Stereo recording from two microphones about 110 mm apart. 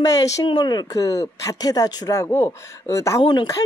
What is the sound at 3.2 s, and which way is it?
Speech, 45° left (ahead or behind).